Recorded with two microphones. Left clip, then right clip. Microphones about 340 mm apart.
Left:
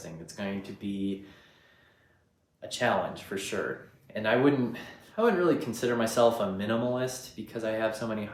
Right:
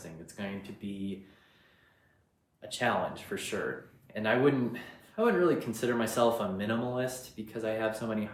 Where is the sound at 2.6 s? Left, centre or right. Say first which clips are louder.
Left 3 dB; centre.